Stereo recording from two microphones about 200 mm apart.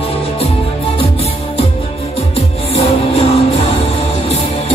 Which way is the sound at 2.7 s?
30° left (ahead or behind).